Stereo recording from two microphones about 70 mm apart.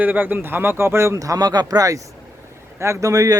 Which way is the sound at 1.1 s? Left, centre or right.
Right.